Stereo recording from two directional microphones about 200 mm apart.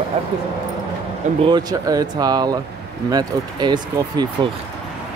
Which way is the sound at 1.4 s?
25° right (ahead or behind).